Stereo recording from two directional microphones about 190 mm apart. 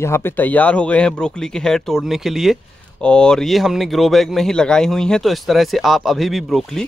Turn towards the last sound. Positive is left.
turn(degrees=0)  # may be behind; listen again after turning